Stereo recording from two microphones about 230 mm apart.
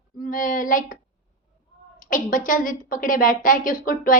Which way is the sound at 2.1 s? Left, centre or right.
Left.